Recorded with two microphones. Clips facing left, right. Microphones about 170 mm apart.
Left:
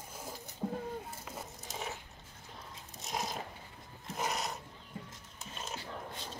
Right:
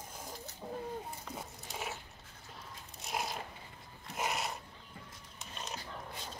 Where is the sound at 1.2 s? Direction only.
Centre (ahead or behind).